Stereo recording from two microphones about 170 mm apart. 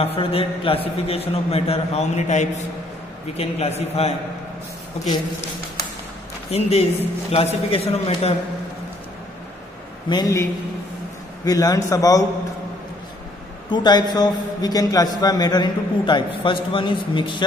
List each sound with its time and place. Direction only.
0.0 s a man's voice: 35° left (ahead or behind)
6.5 s a man's voice: 40° left (ahead or behind)
10.0 s a man's voice: 25° left (ahead or behind)
13.7 s a man's voice: 25° left (ahead or behind)